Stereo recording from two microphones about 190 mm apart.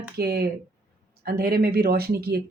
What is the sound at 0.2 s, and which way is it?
Speech, 55° right (ahead or behind).